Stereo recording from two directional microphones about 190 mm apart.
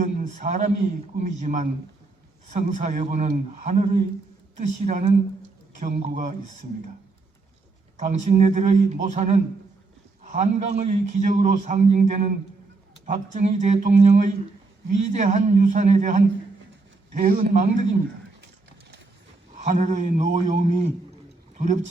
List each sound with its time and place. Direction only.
0.0 s a man's voice: 40° right (ahead or behind)
7.9 s a man's voice: 40° right (ahead or behind)
19.5 s a man's voice: 40° right (ahead or behind)